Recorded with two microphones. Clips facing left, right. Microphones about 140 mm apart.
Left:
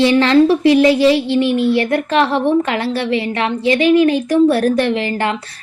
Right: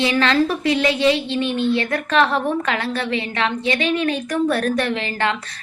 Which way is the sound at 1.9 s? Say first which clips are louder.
Left 3 dB; 30° left (ahead or behind).